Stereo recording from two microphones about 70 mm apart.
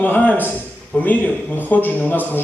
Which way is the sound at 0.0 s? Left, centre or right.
Left.